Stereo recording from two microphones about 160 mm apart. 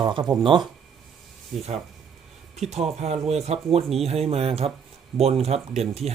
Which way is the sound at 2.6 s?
45° right (ahead or behind).